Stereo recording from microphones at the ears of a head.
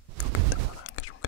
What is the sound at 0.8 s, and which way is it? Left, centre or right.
Whispering, left.